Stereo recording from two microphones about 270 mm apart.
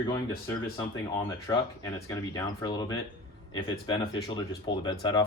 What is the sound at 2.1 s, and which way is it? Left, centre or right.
Speech, centre.